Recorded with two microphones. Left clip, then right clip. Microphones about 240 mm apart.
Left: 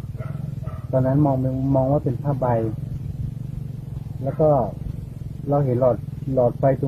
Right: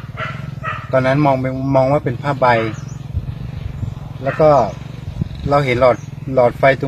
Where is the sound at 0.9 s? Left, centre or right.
Right.